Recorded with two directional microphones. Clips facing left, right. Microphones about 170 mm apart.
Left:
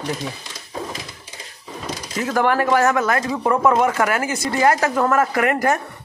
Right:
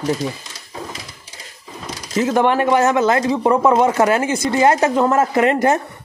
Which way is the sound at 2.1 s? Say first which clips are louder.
Right 3 dB; 20° right (ahead or behind).